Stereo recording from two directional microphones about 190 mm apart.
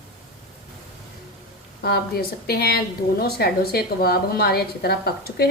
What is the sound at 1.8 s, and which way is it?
A woman's voice, 55° left (ahead or behind).